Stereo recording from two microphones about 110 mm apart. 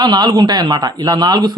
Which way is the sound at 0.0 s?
40° right (ahead or behind).